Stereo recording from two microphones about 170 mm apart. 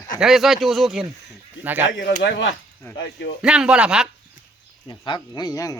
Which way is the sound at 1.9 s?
90° left.